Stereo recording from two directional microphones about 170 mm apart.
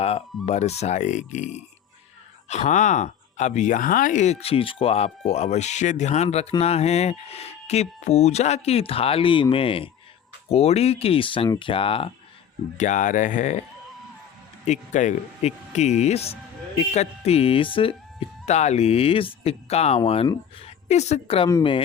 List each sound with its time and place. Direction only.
0.0 s speech: 35° left (ahead or behind)
12.7 s speech: 45° left (ahead or behind)
14.7 s speech: 45° left (ahead or behind)